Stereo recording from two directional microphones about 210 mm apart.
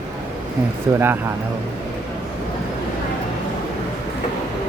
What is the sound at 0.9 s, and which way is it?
Speech, 10° right (ahead or behind).